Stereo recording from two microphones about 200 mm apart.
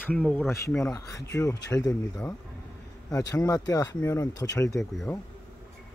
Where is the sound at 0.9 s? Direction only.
15° left (ahead or behind).